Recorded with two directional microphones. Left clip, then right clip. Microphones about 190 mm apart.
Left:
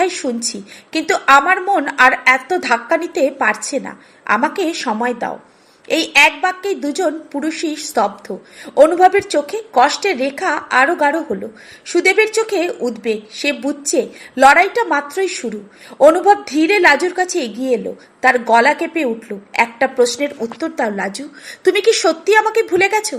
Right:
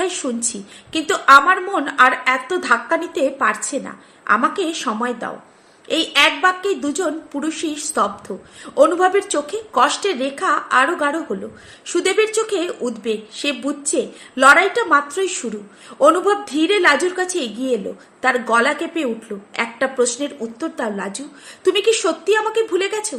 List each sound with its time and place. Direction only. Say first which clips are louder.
0.9 s a woman's voice: even; 15° left (ahead or behind)